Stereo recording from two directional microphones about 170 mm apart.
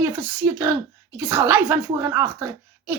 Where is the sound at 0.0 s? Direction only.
15° right (ahead or behind).